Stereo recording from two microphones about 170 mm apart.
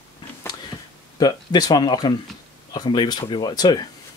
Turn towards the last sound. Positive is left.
turn(degrees=25)  # may be behind; listen again after turning